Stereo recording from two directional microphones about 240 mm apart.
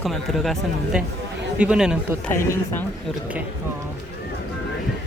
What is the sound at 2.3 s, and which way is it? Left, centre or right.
Speech, centre.